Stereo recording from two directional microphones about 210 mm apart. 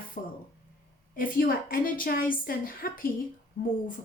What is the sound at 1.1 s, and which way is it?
A woman's voice, 40° left (ahead or behind).